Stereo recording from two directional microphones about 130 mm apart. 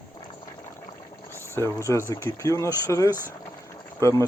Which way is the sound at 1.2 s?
20° left (ahead or behind).